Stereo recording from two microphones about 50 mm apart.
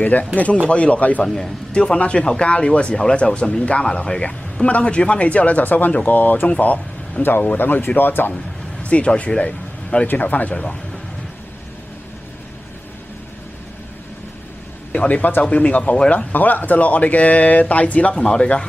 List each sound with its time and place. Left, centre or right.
0.7 s speech: left
1.2 s speech: centre
1.7 s speech: left
7.5 s speech: left
8.8 s speech: left
10.0 s speech: left
10.5 s speech: centre
14.9 s a man's voice: left